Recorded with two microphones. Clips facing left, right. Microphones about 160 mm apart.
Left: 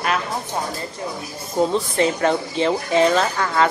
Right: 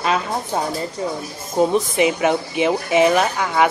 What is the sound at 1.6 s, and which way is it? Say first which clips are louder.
Speech: right 2 dB; 15° right (ahead or behind).